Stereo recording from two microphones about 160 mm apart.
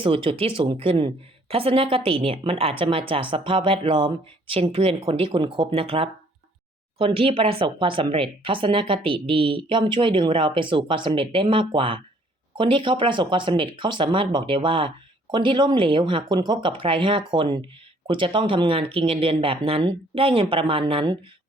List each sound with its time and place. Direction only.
0.0 s speech: 35° right (ahead or behind)